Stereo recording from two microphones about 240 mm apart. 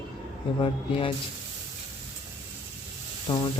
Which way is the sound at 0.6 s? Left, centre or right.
Left.